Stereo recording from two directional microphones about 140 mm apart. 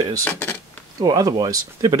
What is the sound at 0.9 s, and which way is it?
Speech, 30° right (ahead or behind).